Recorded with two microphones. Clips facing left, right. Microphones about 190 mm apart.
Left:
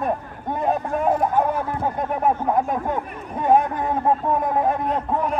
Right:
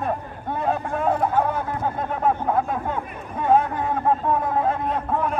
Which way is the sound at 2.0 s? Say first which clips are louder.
Left 2 dB; 15° left (ahead or behind).